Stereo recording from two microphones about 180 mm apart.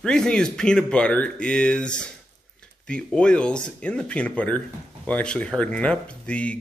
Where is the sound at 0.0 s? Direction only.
5° left (ahead or behind).